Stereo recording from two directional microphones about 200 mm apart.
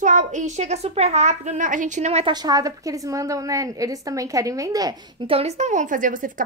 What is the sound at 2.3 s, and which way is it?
A woman's voice, 20° right (ahead or behind).